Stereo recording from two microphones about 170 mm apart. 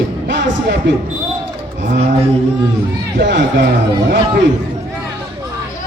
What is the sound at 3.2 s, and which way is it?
Speech, 80° right.